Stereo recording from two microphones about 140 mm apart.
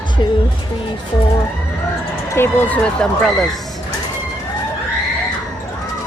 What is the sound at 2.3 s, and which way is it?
Speech, 15° left (ahead or behind).